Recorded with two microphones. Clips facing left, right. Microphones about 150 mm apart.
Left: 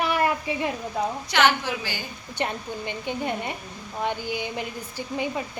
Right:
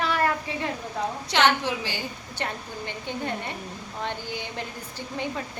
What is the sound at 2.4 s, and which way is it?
Speech, 15° left (ahead or behind).